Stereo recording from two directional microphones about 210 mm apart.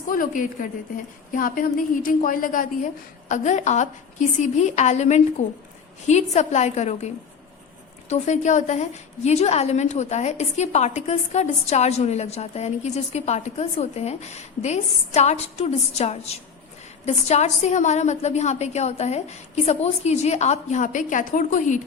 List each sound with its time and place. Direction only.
0.1 s a woman's voice: 40° left (ahead or behind)
8.1 s a woman's voice: 35° left (ahead or behind)